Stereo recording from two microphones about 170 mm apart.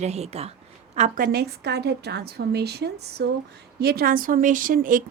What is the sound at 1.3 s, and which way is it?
A woman's voice, 70° right (ahead or behind).